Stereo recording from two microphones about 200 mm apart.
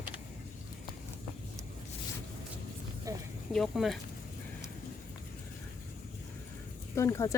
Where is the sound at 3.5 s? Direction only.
Centre (ahead or behind).